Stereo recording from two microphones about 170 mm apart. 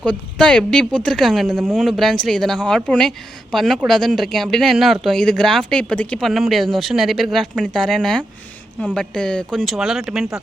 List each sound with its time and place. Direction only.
0.0 s speech: 5° left (ahead or behind)